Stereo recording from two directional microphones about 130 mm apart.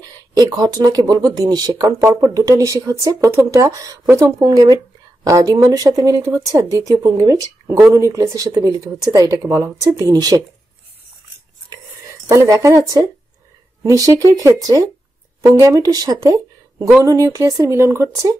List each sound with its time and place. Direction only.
0.0 s speech: 30° right (ahead or behind)
11.7 s a sound: 25° right (ahead or behind)
13.8 s speech: 25° right (ahead or behind)